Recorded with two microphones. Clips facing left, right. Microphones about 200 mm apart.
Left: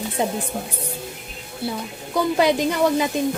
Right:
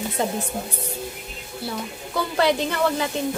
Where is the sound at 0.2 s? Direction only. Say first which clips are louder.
Left 2 dB; 15° left (ahead or behind).